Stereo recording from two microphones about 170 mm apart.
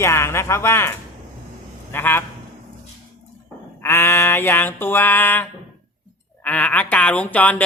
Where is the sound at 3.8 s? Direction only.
15° left (ahead or behind).